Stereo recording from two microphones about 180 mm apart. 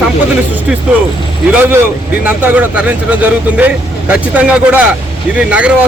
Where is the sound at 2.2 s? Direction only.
10° right (ahead or behind).